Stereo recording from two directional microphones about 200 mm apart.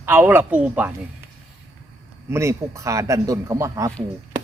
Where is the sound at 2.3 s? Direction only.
15° right (ahead or behind).